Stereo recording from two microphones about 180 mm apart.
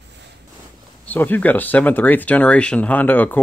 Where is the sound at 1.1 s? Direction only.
10° left (ahead or behind).